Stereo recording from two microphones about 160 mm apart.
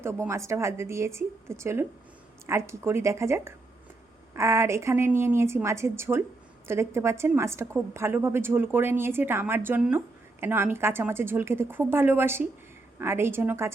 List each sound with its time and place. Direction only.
0.0 s a woman's voice: 15° right (ahead or behind)